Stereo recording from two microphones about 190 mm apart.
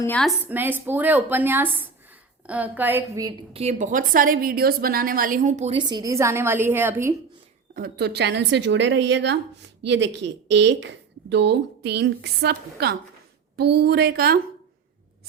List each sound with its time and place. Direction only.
0.0 s a woman's voice: 5° left (ahead or behind)
0.4 s speech: 10° right (ahead or behind)
3.5 s a woman's voice: 35° right (ahead or behind)
5.9 s speech: 15° right (ahead or behind)
7.8 s a woman's voice: 60° right (ahead or behind)